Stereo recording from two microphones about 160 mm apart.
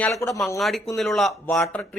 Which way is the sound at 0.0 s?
20° left (ahead or behind).